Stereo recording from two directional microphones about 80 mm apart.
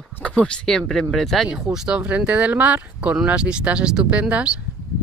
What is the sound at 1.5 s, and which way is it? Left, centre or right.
Speech, centre.